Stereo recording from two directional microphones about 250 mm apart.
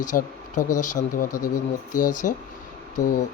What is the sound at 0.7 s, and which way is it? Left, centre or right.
Speech, left.